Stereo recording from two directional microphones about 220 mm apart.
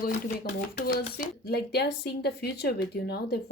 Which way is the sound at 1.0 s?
40° left (ahead or behind).